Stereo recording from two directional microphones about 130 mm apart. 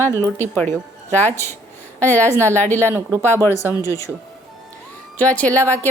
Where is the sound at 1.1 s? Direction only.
15° left (ahead or behind).